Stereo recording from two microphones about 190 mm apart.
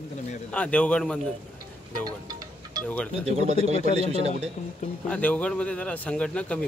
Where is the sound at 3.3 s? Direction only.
30° right (ahead or behind).